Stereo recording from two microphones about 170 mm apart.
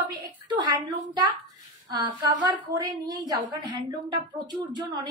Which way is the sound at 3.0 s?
20° right (ahead or behind).